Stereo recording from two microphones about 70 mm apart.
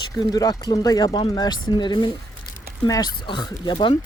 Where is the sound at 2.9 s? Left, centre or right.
Left.